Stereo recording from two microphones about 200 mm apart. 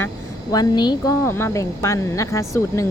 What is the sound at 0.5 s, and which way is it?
Speech, 20° left (ahead or behind).